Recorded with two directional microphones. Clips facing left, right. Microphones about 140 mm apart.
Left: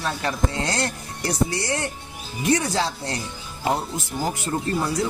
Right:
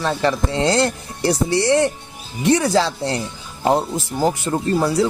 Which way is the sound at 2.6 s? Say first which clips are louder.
Right 7 dB; 90° right.